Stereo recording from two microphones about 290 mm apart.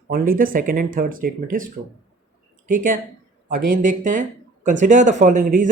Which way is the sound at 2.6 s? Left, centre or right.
Right.